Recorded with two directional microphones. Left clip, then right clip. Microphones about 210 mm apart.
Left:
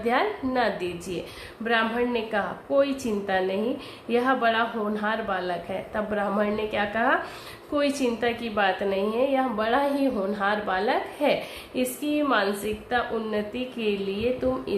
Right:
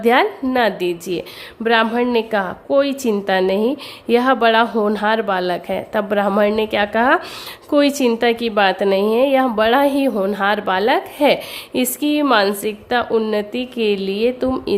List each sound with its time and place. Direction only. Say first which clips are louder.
0.0 s a woman's voice: right 10 dB; 50° right (ahead or behind)